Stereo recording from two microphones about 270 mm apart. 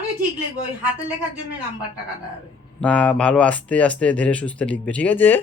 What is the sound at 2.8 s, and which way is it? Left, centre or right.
Speech, centre.